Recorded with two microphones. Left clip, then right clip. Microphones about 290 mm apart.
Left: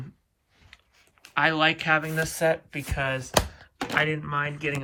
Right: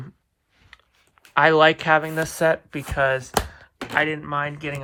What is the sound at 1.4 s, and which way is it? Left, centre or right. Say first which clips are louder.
Speech: right 7 dB; centre.